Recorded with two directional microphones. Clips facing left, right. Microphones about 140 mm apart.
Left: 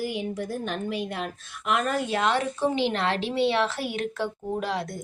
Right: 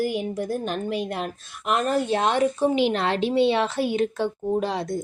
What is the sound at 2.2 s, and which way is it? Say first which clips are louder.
A woman's voice: right 3 dB; 20° right (ahead or behind).